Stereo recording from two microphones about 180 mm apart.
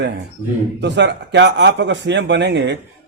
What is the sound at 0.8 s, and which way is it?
Speech, 75° right (ahead or behind).